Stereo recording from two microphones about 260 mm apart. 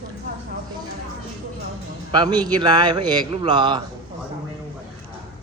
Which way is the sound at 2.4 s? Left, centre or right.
Centre.